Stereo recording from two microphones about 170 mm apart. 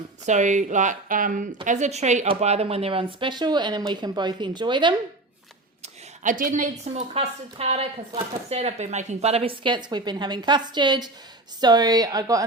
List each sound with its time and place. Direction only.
0.3 s a woman's voice: 45° right (ahead or behind); by 4.9 s 25° right (ahead or behind)
5.8 s a woman's voice: 50° right (ahead or behind); by 12.5 s 20° right (ahead or behind)